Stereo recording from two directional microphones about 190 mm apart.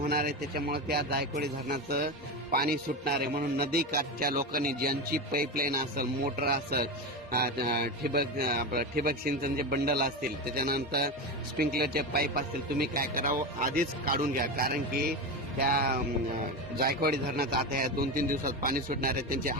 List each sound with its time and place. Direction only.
0.1 s a man's voice: 55° right (ahead or behind)